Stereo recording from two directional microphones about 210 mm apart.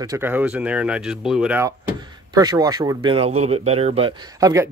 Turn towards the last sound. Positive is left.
turn(degrees=-15)  # may be behind; listen again after turning